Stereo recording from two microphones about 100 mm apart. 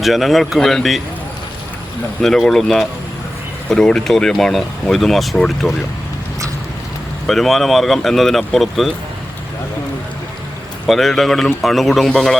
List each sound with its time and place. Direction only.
0.0 s speech: centre (ahead or behind)
2.2 s speech: 5° left (ahead or behind)
7.3 s speech: centre (ahead or behind)
10.8 s speech: centre (ahead or behind)